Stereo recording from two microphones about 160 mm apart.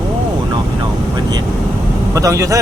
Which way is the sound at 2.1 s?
20° right (ahead or behind).